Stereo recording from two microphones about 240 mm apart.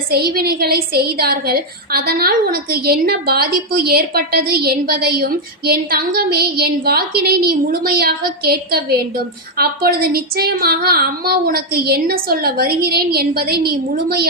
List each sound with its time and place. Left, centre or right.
0.3 s a woman's voice: right